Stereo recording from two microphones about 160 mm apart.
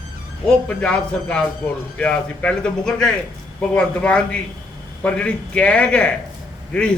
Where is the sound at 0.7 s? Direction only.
5° left (ahead or behind).